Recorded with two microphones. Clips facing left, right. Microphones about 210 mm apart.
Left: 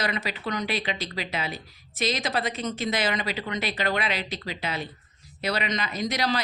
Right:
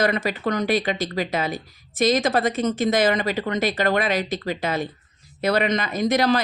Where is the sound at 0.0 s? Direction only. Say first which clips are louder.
Right 8 dB; 50° right (ahead or behind).